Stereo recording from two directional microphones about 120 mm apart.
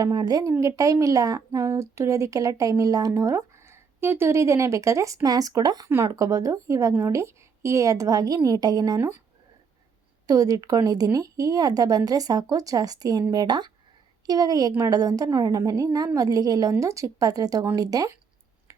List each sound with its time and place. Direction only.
0.0 s speech: 30° right (ahead or behind)
10.2 s speech: 30° right (ahead or behind)